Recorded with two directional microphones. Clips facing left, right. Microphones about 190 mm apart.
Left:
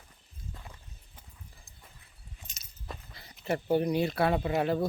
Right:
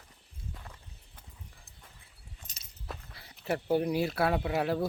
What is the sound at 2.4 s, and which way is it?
Keys jangling, 30° right (ahead or behind).